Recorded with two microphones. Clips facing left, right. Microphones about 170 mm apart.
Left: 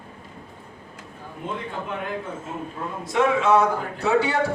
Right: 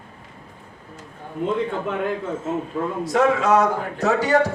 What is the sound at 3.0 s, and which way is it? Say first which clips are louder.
A man's voice: right 1 dB; 40° right (ahead or behind).